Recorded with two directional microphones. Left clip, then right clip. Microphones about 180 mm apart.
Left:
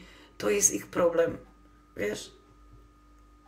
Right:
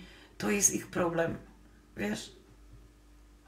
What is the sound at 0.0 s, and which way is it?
Speech, 45° left (ahead or behind).